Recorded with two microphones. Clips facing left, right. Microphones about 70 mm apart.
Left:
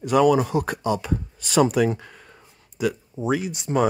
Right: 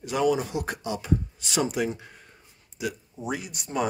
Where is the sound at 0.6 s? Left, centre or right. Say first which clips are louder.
Left 7 dB; left.